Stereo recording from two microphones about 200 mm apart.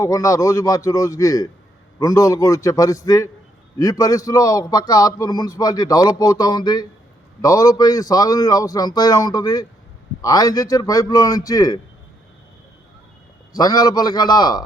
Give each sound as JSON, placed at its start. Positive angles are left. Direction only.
{"t": 0.0, "sound": "a man's voice", "side_deg": 15}
{"t": 13.5, "sound": "a man's voice", "side_deg": 20}